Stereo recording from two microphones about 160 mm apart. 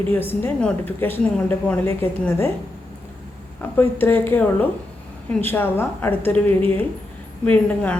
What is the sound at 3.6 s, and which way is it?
A woman's voice, 10° left (ahead or behind).